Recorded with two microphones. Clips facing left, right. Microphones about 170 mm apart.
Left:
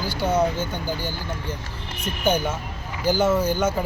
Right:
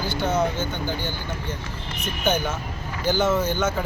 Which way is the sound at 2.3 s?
10° left (ahead or behind).